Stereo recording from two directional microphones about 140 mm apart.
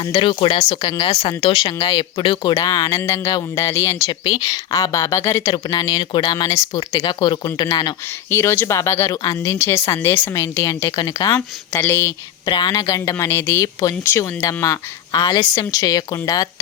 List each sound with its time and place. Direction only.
0.0 s speech: 35° left (ahead or behind)
8.3 s speech: 15° left (ahead or behind)
12.5 s speech: 30° left (ahead or behind)